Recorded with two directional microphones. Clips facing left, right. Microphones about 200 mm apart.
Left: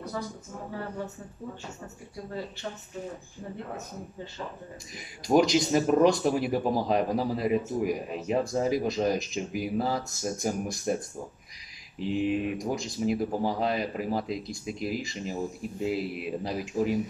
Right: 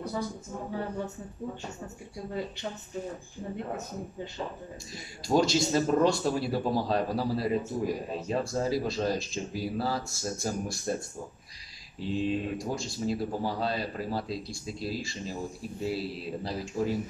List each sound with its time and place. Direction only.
5.2 s speech: 20° left (ahead or behind)
12.1 s speech: 15° left (ahead or behind)